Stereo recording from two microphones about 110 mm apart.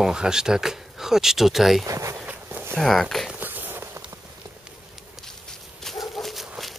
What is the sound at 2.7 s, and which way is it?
Speech, centre (ahead or behind).